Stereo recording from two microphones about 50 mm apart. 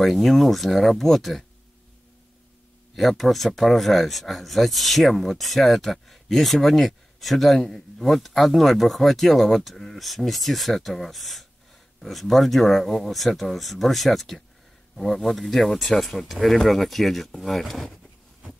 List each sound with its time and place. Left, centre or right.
0.0 s speech: centre
3.0 s speech: centre